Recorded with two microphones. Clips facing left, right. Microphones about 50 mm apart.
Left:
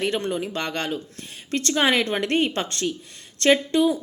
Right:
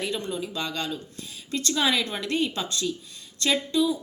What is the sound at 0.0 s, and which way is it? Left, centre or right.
Speech, left.